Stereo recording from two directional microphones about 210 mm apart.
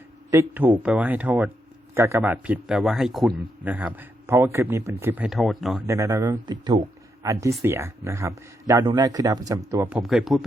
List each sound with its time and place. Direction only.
0.3 s a man's voice: 10° right (ahead or behind)
5.8 s a man's voice: 15° right (ahead or behind)